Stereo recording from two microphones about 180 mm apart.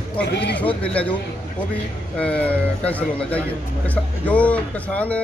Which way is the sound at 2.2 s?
5° left (ahead or behind).